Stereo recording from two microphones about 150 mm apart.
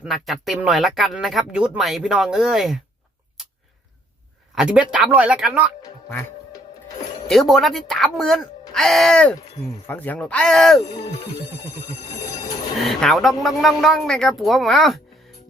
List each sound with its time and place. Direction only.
0.0 s speech: centre (ahead or behind)
4.5 s speech: 5° right (ahead or behind)
5.8 s music: 15° left (ahead or behind)
7.3 s speech: centre (ahead or behind)
10.8 s speech: 25° left (ahead or behind)
12.8 s speech: centre (ahead or behind)